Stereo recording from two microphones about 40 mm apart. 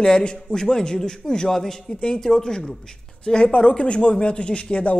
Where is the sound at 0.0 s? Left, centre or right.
Left.